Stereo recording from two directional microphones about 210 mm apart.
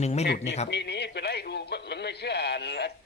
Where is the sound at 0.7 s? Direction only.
55° left (ahead or behind).